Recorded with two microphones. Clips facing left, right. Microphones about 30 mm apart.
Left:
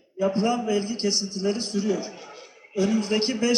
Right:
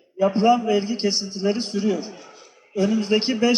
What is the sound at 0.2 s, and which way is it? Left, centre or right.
A man's voice, centre.